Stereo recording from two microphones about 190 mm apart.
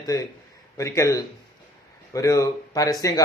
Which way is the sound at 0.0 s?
20° left (ahead or behind).